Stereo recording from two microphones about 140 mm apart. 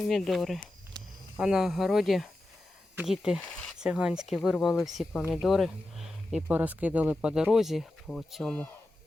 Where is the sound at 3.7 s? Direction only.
5° right (ahead or behind).